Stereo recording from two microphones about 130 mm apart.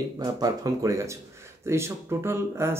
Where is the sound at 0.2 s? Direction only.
30° right (ahead or behind).